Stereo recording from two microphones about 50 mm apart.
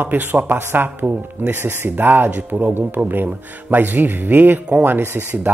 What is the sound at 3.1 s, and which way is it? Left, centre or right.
Speech, right.